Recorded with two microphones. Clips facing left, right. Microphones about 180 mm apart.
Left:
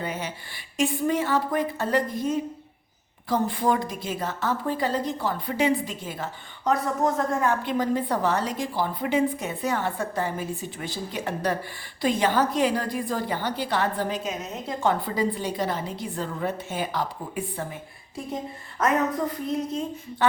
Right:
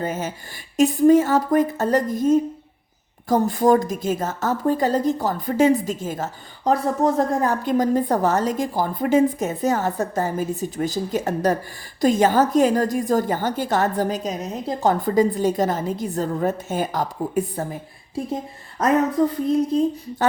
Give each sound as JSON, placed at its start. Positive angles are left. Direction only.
{"t": 0.0, "sound": "a woman's voice", "side_deg": -45}
{"t": 19.7, "sound": "a woman's voice", "side_deg": -35}